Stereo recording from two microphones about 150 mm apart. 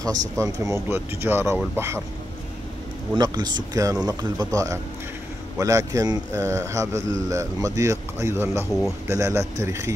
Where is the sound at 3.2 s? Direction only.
30° right (ahead or behind).